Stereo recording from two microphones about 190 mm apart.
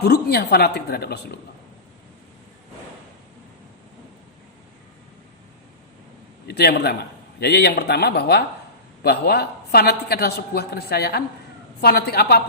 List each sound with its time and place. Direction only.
0.0 s a woman's voice: 55° left (ahead or behind)
6.5 s a woman's voice: 55° left (ahead or behind)